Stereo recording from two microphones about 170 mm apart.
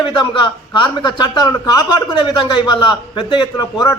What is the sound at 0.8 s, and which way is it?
A man's voice, 25° left (ahead or behind).